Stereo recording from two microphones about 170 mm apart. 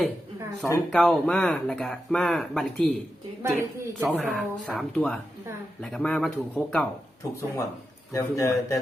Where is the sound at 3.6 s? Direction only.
10° right (ahead or behind).